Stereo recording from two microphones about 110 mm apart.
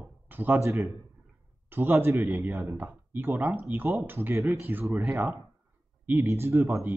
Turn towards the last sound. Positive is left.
turn(degrees=-20)  # may be behind; listen again after turning